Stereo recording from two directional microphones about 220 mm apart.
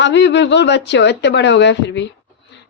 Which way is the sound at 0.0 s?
55° left (ahead or behind).